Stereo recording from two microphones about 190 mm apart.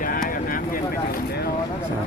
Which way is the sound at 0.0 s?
50° left (ahead or behind).